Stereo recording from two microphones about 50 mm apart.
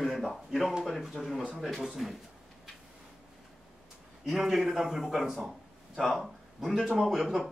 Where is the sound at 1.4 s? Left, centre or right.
Centre.